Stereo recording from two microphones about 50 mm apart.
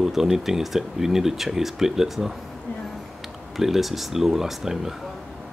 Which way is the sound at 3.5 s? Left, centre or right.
Centre.